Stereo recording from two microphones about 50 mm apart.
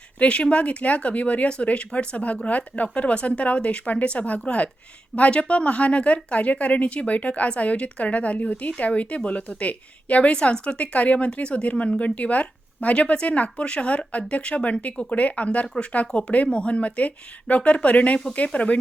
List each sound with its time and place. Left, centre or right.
0.2 s a woman's voice: left